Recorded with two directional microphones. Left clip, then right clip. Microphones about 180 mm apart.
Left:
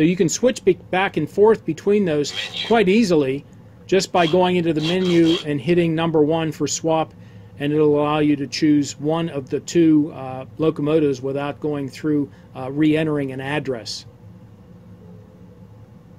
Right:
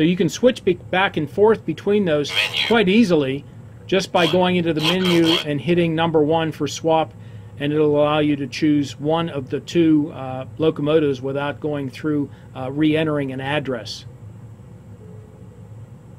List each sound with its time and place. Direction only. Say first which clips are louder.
0.0 s speech: even; 45° left (ahead or behind)